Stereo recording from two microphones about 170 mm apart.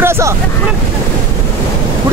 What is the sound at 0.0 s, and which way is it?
Vehicle, 15° right (ahead or behind).